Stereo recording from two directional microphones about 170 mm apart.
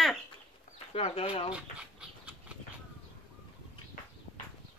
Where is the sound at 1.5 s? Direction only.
5° right (ahead or behind).